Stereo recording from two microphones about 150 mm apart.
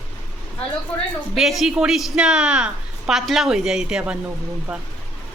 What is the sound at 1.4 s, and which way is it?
A woman's voice, centre (ahead or behind).